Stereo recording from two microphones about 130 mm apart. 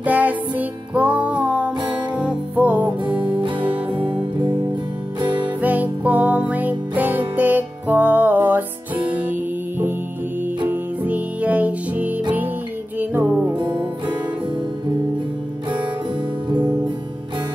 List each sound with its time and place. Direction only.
0.0 s music: 10° right (ahead or behind)
3.3 s music: 40° right (ahead or behind)
5.2 s music: 40° right (ahead or behind)
5.6 s music: 10° right (ahead or behind)
13.5 s music: 35° right (ahead or behind)